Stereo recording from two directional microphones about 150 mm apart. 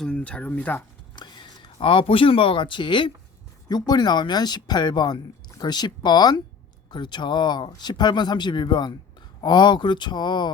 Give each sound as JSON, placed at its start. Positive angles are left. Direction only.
{"t": 0.0, "sound": "speech", "side_deg": 5}
{"t": 1.1, "sound": "speech", "side_deg": 30}